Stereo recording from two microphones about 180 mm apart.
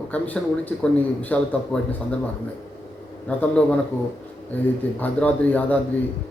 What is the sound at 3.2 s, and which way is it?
Speech, 5° left (ahead or behind).